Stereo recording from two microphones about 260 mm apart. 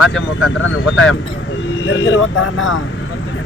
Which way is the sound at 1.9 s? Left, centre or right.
Left.